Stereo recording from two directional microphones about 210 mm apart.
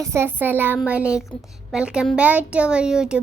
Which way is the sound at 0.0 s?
10° right (ahead or behind).